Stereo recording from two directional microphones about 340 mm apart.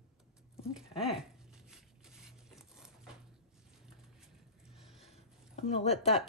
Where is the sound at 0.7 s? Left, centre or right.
Centre.